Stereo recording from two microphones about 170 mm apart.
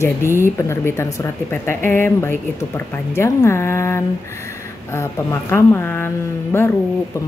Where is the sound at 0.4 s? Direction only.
15° left (ahead or behind).